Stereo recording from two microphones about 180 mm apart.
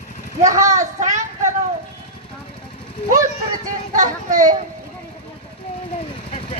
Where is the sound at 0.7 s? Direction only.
40° right (ahead or behind).